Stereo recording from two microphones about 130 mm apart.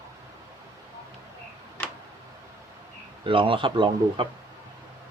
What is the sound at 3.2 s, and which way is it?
Speech, 40° right (ahead or behind).